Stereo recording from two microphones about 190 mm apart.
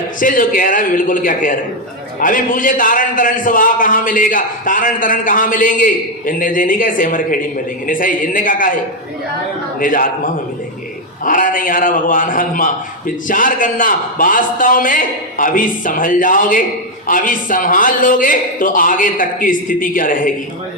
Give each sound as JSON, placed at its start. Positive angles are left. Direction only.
{"t": 0.2, "sound": "a man's voice", "side_deg": 45}
{"t": 9.8, "sound": "a man's voice", "side_deg": 45}